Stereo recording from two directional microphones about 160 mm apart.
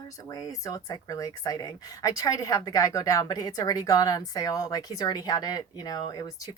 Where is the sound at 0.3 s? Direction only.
25° left (ahead or behind).